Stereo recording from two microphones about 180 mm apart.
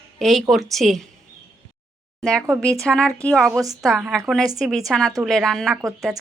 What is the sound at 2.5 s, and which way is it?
Speech, 5° left (ahead or behind).